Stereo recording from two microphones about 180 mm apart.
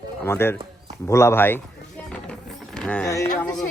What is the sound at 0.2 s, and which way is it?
A man's voice, 15° left (ahead or behind).